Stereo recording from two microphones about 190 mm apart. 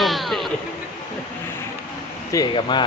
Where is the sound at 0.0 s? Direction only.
Centre (ahead or behind).